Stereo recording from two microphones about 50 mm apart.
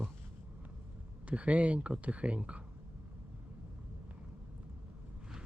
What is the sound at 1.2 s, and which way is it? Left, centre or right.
Speech, right.